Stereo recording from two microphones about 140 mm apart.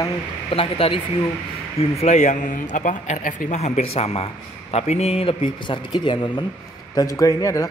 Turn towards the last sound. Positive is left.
turn(degrees=25)  # may be behind; listen again after turning